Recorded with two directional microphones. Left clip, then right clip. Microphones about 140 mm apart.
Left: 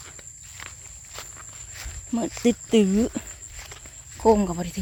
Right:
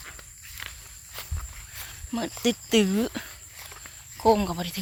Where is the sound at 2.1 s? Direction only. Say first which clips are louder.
Left 3 dB; 35° left (ahead or behind).